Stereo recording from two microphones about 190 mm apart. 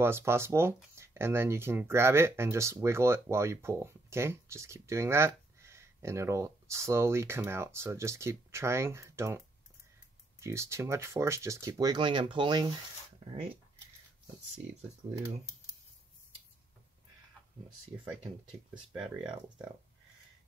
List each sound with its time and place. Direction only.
0.0 s speech: 15° right (ahead or behind)
10.4 s speech: 15° right (ahead or behind)
15.0 s speech: 10° right (ahead or behind)
18.7 s speech: 5° right (ahead or behind)